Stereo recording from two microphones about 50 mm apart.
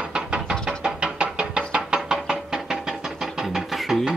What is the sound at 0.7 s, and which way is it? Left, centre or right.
Music, right.